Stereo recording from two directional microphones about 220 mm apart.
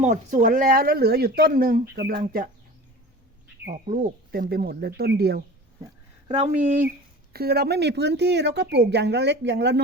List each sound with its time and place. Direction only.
0.0 s a woman's voice: 35° right (ahead or behind)
3.7 s a woman's voice: 40° right (ahead or behind)
6.2 s speech: 30° right (ahead or behind)
7.3 s a woman's voice: 45° right (ahead or behind)